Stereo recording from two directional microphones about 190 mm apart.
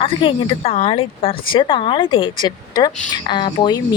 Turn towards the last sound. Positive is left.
turn(degrees=20)  # may be behind; listen again after turning